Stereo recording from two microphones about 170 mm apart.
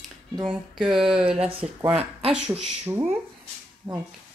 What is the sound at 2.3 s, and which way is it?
Speech, 10° right (ahead or behind).